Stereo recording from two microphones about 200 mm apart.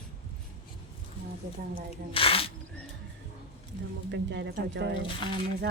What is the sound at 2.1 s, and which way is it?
Speech, 25° left (ahead or behind).